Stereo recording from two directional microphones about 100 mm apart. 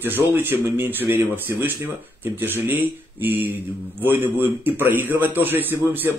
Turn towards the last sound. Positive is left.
turn(degrees=-20)  # may be behind; listen again after turning